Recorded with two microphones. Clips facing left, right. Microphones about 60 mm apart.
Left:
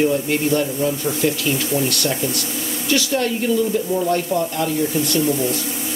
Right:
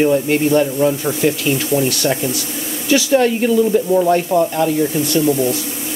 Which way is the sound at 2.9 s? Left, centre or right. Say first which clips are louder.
Right 6 dB; right.